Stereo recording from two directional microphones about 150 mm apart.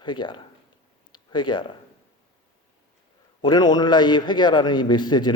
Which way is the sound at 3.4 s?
30° left (ahead or behind).